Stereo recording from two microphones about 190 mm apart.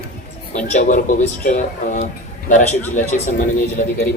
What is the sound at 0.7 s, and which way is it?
Speech, 45° left (ahead or behind).